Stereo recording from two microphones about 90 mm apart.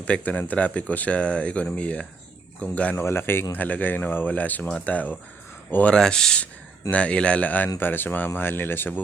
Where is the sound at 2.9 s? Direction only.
25° left (ahead or behind).